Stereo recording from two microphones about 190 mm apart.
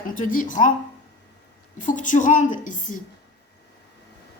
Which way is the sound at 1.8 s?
40° left (ahead or behind).